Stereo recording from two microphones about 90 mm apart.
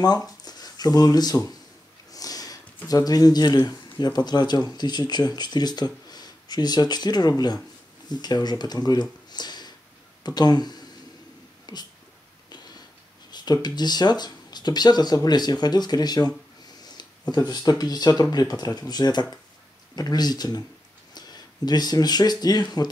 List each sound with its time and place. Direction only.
0.0 s speech: 45° left (ahead or behind)
2.1 s sniff: 45° left (ahead or behind)
2.9 s speech: 45° left (ahead or behind)
9.3 s a sound: 50° left (ahead or behind)
10.2 s speech: 50° left (ahead or behind)
11.6 s a sound: 50° left (ahead or behind)
13.3 s speech: 50° left (ahead or behind)